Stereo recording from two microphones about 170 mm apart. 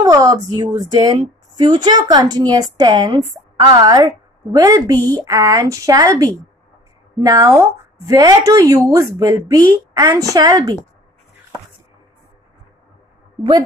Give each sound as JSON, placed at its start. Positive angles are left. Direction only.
{"t": 0.0, "sound": "a woman's voice", "side_deg": -25}
{"t": 13.4, "sound": "a woman's voice", "side_deg": -25}